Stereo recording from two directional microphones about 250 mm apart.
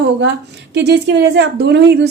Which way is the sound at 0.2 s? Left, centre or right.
Right.